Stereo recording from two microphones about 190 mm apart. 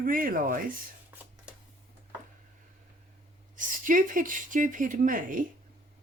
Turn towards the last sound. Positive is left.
turn(degrees=-45)  # may be behind; listen again after turning